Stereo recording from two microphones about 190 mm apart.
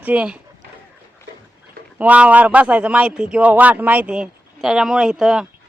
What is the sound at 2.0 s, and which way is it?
Speech, 5° right (ahead or behind).